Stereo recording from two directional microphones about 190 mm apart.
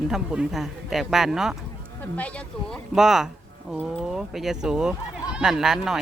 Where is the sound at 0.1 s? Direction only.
5° right (ahead or behind).